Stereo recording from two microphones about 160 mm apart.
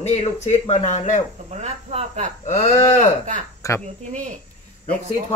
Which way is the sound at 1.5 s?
40° right (ahead or behind).